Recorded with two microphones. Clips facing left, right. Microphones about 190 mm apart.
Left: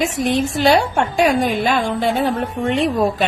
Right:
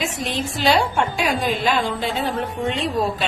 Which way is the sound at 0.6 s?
55° left (ahead or behind).